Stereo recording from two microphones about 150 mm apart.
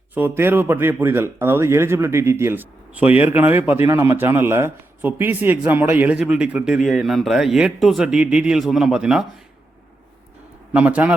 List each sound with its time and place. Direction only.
0.1 s a man's voice: 15° right (ahead or behind)
10.7 s speech: 10° right (ahead or behind)